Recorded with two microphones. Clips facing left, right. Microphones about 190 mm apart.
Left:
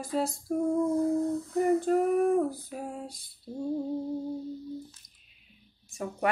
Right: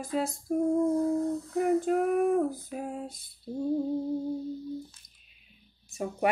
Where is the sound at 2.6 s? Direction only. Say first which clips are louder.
Right 2 dB; 20° right (ahead or behind).